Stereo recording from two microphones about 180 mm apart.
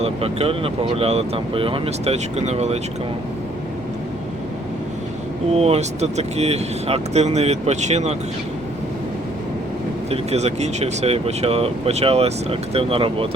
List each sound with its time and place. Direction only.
0.0 s speech: 35° right (ahead or behind)
5.5 s speech: 35° right (ahead or behind)
10.1 s speech: 40° right (ahead or behind)